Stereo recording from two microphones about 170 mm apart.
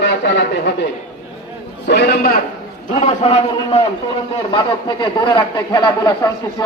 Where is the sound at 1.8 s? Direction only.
75° left (ahead or behind).